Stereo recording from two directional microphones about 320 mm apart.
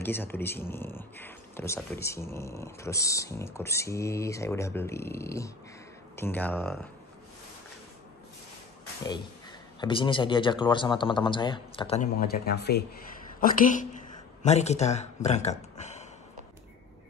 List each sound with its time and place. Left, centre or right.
0.0 s speech: centre
9.8 s speech: centre
15.8 s a sound: left